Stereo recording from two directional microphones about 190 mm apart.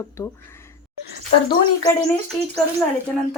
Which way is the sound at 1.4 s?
25° left (ahead or behind).